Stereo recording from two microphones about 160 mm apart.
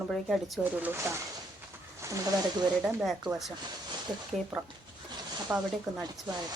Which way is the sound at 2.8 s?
Centre (ahead or behind).